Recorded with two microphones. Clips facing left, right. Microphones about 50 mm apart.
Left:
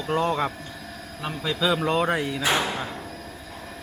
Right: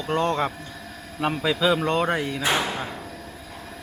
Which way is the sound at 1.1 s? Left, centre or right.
Right.